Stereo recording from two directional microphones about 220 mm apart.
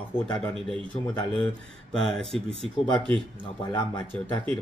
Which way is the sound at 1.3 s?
5° left (ahead or behind).